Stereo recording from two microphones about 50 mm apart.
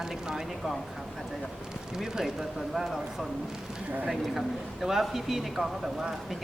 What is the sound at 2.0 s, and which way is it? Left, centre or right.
A man's voice, centre.